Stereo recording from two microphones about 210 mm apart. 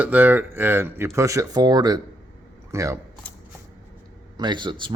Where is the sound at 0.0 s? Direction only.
10° right (ahead or behind).